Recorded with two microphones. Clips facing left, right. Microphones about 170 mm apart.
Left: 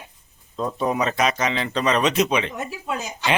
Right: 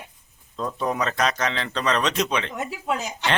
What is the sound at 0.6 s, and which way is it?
Speech, 10° left (ahead or behind).